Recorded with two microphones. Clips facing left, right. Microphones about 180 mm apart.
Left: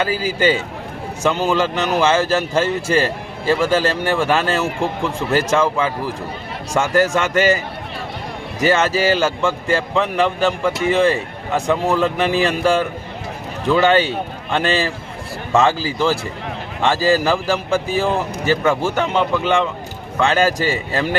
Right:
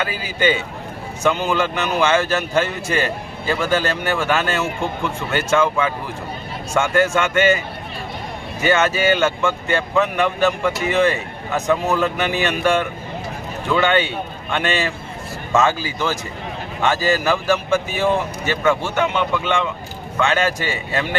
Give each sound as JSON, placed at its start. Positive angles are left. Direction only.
{"t": 0.0, "sound": "speech", "side_deg": 35}
{"t": 6.7, "sound": "speech", "side_deg": 35}
{"t": 8.6, "sound": "speech", "side_deg": 35}